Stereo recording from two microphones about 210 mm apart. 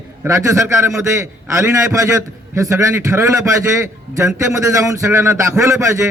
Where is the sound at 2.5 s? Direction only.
15° right (ahead or behind).